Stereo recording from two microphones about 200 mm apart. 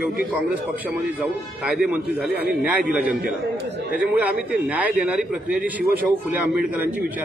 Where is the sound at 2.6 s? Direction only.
5° right (ahead or behind).